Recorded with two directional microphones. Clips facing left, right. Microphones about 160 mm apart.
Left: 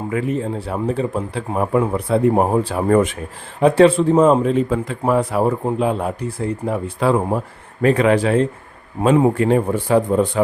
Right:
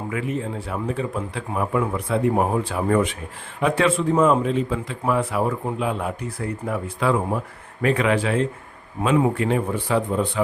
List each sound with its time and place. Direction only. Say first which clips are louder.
0.1 s speech: left 6 dB; 40° left (ahead or behind)
3.6 s speech: left 8 dB; 35° left (ahead or behind)
4.5 s speech: left 5 dB; 45° left (ahead or behind)